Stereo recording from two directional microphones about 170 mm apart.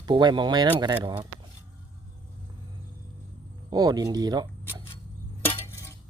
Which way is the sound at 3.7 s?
25° right (ahead or behind).